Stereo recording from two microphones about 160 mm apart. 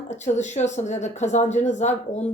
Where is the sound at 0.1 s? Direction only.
45° left (ahead or behind).